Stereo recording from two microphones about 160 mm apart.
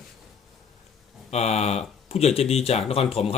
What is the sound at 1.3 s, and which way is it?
Speech, 40° left (ahead or behind).